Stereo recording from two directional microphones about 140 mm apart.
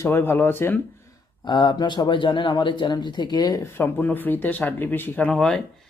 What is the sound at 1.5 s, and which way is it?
Speech, 35° left (ahead or behind).